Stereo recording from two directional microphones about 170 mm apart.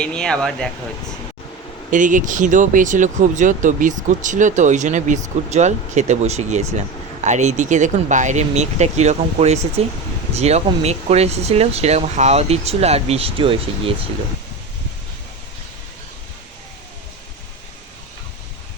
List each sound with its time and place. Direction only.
0.0 s speech: 5° left (ahead or behind)
1.9 s speech: 50° right (ahead or behind); by 13.9 s 30° right (ahead or behind)